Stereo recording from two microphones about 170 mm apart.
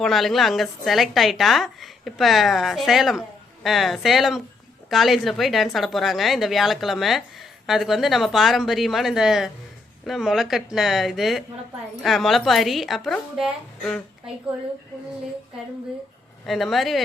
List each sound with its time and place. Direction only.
0.0 s a woman's voice: centre (ahead or behind)
16.5 s a woman's voice: centre (ahead or behind)